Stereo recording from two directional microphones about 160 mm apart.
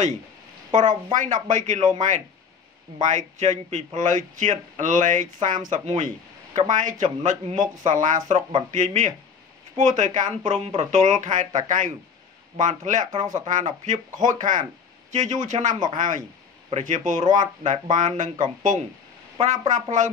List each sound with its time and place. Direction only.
0.7 s a woman's voice: 50° right (ahead or behind)